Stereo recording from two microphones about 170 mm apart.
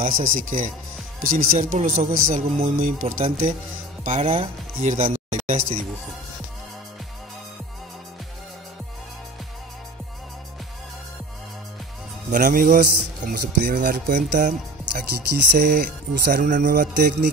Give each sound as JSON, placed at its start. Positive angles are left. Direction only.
{"t": 0.0, "sound": "a man's voice", "side_deg": -55}
{"t": 12.3, "sound": "a man's voice", "side_deg": -50}